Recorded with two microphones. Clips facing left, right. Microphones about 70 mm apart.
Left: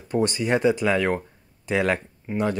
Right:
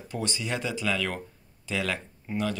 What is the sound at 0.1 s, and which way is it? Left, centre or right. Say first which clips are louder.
Speech: left 10 dB; left.